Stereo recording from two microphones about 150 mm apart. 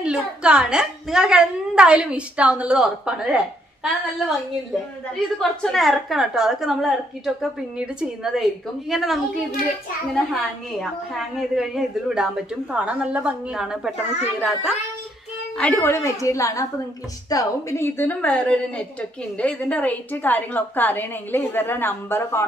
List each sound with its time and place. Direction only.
0.0 s a woman's voice: 5° right (ahead or behind)
5.4 s a woman's voice: centre (ahead or behind)
15.5 s a woman's voice: 10° left (ahead or behind)